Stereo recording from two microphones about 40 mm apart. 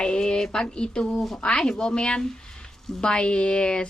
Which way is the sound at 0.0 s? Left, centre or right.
Left.